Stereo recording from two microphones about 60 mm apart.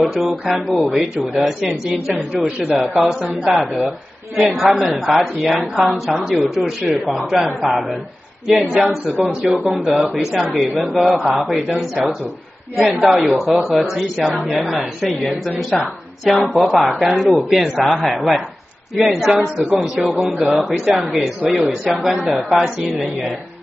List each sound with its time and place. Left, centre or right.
0.2 s a woman's voice: centre
2.1 s a woman's voice: right
2.7 s a woman's voice: centre